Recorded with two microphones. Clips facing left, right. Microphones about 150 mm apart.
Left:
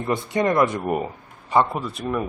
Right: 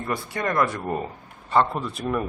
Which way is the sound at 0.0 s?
20° left (ahead or behind).